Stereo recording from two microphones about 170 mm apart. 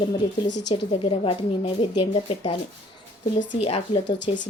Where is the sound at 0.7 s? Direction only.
30° left (ahead or behind).